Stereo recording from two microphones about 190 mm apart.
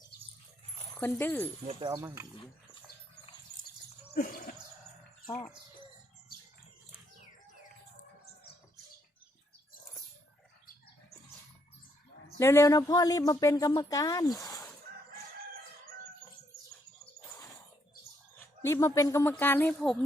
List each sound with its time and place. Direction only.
0.9 s speech: 10° left (ahead or behind)
1.6 s speech: 20° right (ahead or behind)
4.1 s a sound: 50° left (ahead or behind)
5.3 s speech: 10° left (ahead or behind)
12.4 s speech: 15° left (ahead or behind)
18.6 s speech: 15° left (ahead or behind)